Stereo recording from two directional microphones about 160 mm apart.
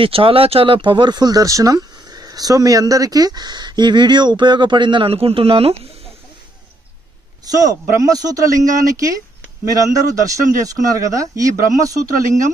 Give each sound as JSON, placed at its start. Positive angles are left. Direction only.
{"t": 0.0, "sound": "speech", "side_deg": -35}
{"t": 7.4, "sound": "speech", "side_deg": -20}